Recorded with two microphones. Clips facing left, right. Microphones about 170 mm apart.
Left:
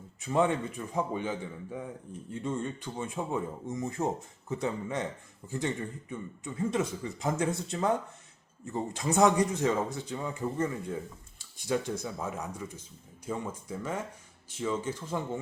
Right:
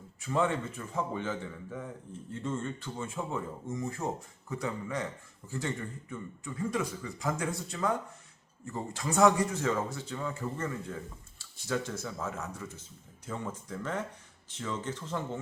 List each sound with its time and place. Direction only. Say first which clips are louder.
0.2 s a man's voice: left 3 dB; 20° left (ahead or behind)